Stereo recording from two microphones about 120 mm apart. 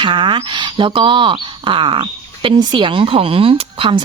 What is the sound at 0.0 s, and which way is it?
Speech, 45° right (ahead or behind).